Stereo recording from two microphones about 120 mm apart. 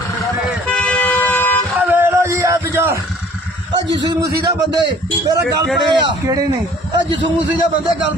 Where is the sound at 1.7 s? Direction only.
15° right (ahead or behind).